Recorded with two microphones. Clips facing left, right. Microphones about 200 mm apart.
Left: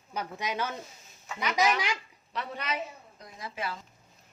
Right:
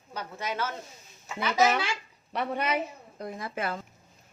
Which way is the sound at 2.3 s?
55° right (ahead or behind).